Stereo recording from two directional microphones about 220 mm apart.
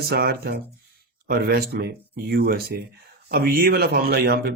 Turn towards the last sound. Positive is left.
turn(degrees=-45)  # may be behind; listen again after turning